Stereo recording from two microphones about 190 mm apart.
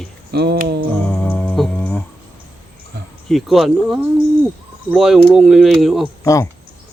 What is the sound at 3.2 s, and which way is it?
Speech, centre (ahead or behind).